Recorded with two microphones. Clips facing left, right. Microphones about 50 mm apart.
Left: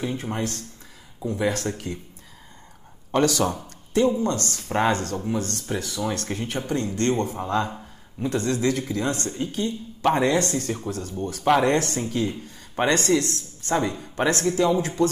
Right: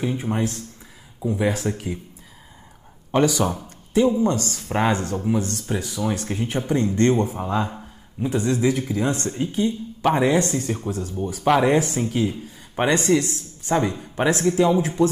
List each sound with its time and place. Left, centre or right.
0.0 s speech: centre
3.1 s speech: centre
7.2 s speech: centre
9.2 s speech: right